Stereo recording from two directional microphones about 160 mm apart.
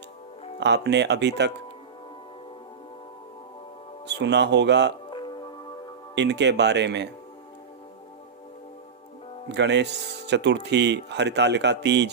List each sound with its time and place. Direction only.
0.6 s speech: 90° right
4.0 s speech: 90° right
5.1 s music: 30° left (ahead or behind)
6.1 s speech: 90° right
9.5 s speech: 90° right